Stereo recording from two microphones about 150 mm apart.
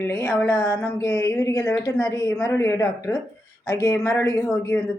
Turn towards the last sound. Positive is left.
turn(degrees=20)  # may be behind; listen again after turning